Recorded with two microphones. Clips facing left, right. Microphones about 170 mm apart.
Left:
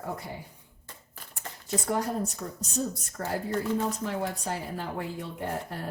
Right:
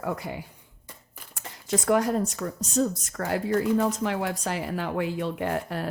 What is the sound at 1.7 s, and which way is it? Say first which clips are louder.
Speech: right 6 dB; 90° right.